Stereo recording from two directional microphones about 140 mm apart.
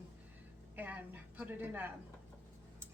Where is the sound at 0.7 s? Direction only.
10° right (ahead or behind).